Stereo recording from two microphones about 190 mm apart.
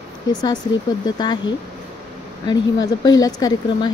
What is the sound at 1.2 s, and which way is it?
Speech, 25° left (ahead or behind).